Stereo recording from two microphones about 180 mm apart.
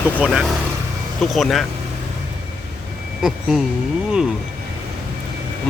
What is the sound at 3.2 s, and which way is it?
Speech, 5° right (ahead or behind).